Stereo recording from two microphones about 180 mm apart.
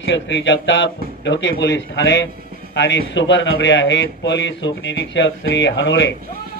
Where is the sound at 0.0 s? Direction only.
90° left.